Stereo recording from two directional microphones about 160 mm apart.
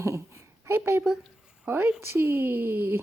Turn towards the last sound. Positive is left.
turn(degrees=-15)  # may be behind; listen again after turning